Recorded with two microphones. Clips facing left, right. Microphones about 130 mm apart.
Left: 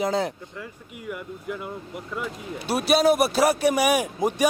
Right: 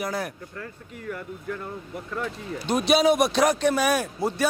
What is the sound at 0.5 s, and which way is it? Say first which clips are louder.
A man's voice: even; 10° left (ahead or behind).